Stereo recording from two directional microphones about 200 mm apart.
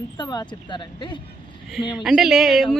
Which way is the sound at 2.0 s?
Centre (ahead or behind).